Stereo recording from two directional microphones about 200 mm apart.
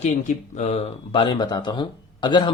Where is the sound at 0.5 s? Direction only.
35° left (ahead or behind).